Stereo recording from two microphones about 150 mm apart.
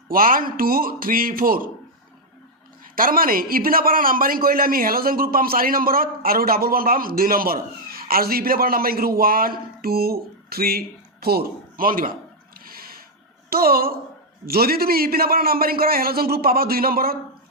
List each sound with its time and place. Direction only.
0.1 s a man's voice: 70° right (ahead or behind)
2.8 s a man's voice: 70° right (ahead or behind)
12.5 s a sound: 80° right
13.5 s a man's voice: 80° right